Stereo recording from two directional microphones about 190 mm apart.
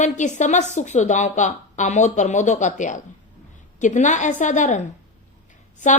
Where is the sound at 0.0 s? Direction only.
40° left (ahead or behind).